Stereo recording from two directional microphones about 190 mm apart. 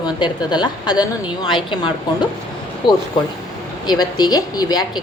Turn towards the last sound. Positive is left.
turn(degrees=20)  # may be behind; listen again after turning